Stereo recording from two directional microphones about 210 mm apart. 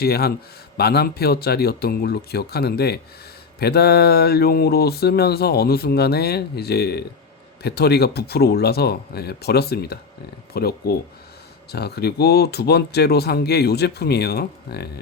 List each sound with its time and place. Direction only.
0.0 s speech: 50° left (ahead or behind)